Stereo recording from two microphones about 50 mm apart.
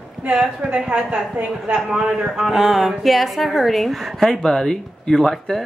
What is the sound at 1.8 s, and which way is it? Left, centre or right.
A woman's voice, centre.